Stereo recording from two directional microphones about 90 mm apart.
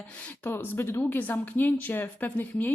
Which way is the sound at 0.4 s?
25° left (ahead or behind).